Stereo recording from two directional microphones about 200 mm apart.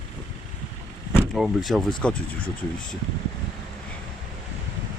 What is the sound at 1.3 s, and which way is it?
Speech, centre (ahead or behind).